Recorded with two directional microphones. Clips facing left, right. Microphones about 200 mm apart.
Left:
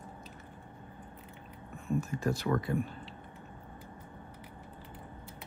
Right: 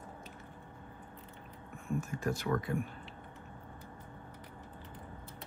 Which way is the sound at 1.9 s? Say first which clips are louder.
Left 3 dB; 35° left (ahead or behind).